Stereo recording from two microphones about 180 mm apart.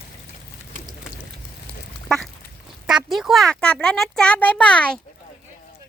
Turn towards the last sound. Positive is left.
turn(degrees=5)  # may be behind; listen again after turning